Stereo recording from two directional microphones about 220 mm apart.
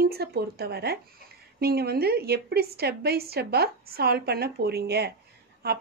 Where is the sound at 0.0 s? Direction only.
45° right (ahead or behind).